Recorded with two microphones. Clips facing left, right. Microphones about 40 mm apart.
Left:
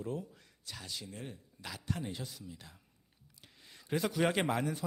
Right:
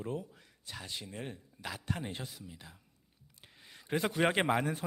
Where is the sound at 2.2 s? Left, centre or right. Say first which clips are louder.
Even; centre.